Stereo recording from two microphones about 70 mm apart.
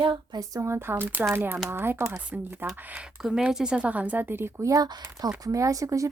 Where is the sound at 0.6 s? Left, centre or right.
Right.